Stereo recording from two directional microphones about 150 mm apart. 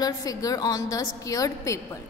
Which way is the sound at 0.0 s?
25° left (ahead or behind).